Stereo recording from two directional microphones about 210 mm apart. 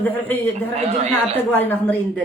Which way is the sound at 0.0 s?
10° left (ahead or behind).